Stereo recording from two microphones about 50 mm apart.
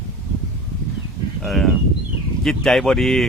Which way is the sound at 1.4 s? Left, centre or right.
Centre.